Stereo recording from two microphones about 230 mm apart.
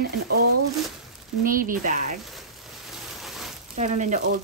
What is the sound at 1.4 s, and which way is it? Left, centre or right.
Speech, right.